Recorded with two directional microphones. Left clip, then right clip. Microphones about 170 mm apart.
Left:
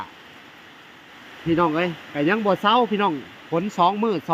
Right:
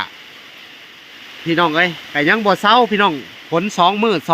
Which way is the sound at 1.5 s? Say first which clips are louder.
Right 6 dB; centre (ahead or behind).